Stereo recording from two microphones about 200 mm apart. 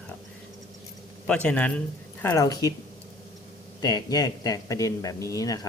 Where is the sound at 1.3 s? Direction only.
5° left (ahead or behind).